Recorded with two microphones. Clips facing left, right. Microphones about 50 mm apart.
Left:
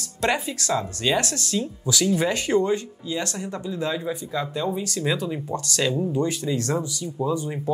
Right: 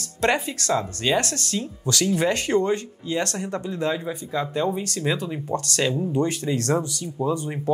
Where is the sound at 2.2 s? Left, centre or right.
Right.